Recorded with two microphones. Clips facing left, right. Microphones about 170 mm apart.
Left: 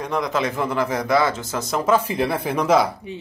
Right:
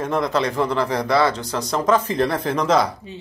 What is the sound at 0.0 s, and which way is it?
Speech, centre (ahead or behind).